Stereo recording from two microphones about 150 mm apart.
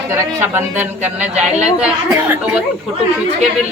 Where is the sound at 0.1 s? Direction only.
15° right (ahead or behind).